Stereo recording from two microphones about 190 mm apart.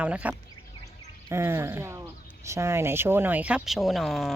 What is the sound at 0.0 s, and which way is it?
Speech, 5° right (ahead or behind).